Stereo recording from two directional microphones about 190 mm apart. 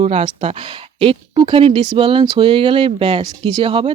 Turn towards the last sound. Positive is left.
turn(degrees=-25)  # may be behind; listen again after turning